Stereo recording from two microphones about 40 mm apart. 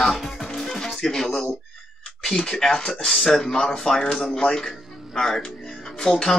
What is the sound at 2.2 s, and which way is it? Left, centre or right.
Speech, centre.